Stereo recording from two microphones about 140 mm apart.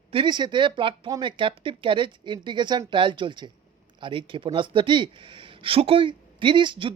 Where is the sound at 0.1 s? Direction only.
35° right (ahead or behind).